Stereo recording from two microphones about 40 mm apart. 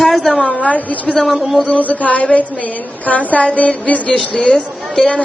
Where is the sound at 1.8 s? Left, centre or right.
Left.